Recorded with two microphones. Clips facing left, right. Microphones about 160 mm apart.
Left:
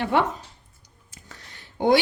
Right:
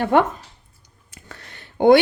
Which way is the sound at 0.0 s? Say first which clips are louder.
Right 5 dB; 50° right (ahead or behind).